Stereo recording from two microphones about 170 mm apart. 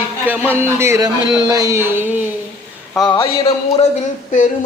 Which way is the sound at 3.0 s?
25° left (ahead or behind).